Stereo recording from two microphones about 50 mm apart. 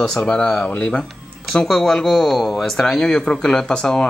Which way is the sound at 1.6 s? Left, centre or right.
Centre.